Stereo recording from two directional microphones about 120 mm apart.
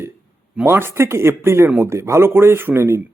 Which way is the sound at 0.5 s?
20° right (ahead or behind).